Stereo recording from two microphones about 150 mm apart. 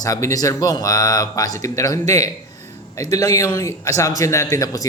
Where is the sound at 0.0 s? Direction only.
20° left (ahead or behind).